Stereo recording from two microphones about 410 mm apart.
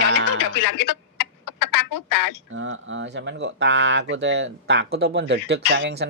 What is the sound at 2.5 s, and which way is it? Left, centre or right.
Speech, right.